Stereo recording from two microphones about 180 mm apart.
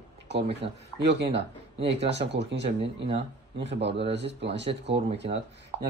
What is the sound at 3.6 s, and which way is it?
Speech, 75° right (ahead or behind).